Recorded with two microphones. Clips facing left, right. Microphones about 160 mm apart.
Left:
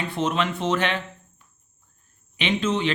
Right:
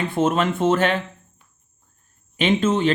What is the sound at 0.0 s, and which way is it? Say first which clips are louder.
Speech: right 5 dB; 50° right (ahead or behind).